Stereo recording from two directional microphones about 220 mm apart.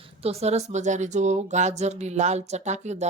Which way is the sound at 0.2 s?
30° right (ahead or behind).